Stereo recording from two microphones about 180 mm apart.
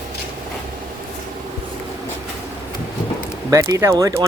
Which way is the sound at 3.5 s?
15° right (ahead or behind).